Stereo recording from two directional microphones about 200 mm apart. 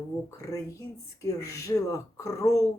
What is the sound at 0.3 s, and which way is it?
Speech, 15° left (ahead or behind).